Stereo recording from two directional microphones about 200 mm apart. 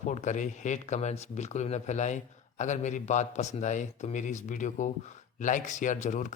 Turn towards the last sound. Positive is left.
turn(degrees=40)  # may be behind; listen again after turning